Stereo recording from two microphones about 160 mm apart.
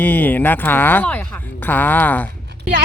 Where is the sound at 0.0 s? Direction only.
10° left (ahead or behind).